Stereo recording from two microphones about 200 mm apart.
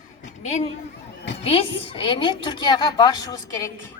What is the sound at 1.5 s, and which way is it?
A woman's voice, 25° left (ahead or behind).